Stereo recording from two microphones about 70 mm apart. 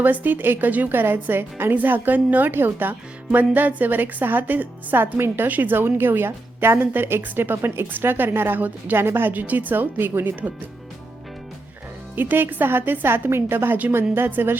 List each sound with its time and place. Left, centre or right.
0.0 s a woman's voice: right
12.1 s a woman's voice: right